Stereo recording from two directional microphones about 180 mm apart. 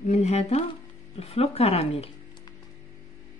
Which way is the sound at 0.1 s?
35° left (ahead or behind).